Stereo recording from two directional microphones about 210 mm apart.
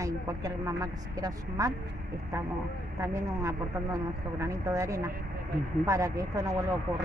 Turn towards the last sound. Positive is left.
turn(degrees=-15)  # may be behind; listen again after turning